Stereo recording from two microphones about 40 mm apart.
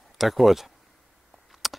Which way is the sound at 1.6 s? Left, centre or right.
Centre.